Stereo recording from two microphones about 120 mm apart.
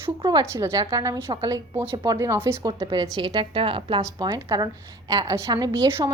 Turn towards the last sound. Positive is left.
turn(degrees=-30)  # may be behind; listen again after turning